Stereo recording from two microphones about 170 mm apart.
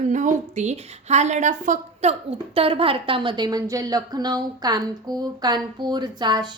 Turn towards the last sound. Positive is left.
turn(degrees=-25)  # may be behind; listen again after turning